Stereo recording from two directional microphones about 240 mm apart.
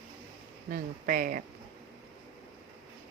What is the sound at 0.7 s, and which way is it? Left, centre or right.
Speech, right.